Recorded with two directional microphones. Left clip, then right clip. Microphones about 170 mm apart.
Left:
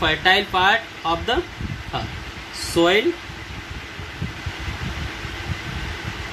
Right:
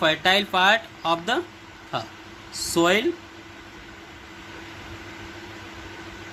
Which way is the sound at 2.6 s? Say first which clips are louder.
Left 3 dB; 55° right (ahead or behind).